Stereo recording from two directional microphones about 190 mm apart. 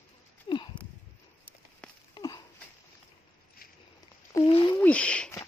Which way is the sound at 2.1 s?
20° left (ahead or behind).